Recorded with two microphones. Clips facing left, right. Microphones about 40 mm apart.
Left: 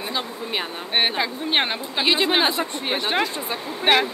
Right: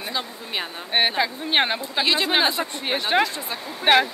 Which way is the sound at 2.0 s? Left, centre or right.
Centre.